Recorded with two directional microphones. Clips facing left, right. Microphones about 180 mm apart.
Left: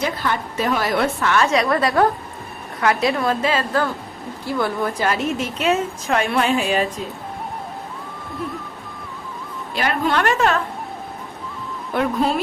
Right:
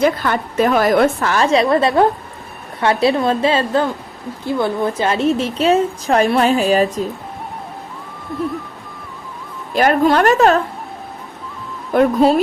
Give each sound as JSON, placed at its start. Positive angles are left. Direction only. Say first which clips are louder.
{"t": 0.0, "sound": "a woman's voice", "louder": "right 7 dB", "side_deg": -55}
{"t": 9.7, "sound": "a woman's voice", "louder": "right 7 dB", "side_deg": -45}
{"t": 11.9, "sound": "a woman's voice", "louder": "right 7 dB", "side_deg": -40}